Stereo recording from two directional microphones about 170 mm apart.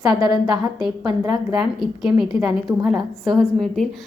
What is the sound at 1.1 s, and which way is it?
Speech, 25° right (ahead or behind).